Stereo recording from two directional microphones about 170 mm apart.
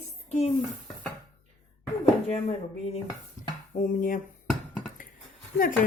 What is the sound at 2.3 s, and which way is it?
Speech, 35° left (ahead or behind).